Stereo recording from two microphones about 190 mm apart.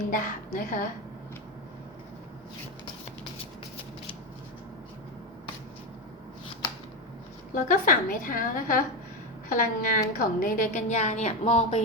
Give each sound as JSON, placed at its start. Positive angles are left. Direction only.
{"t": 0.1, "sound": "a woman's voice", "side_deg": 45}
{"t": 7.5, "sound": "a woman's voice", "side_deg": 45}